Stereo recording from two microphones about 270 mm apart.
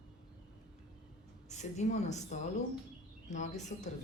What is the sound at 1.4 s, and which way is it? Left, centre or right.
A woman's voice, left.